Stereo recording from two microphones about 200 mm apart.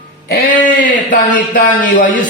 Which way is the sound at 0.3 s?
45° left (ahead or behind).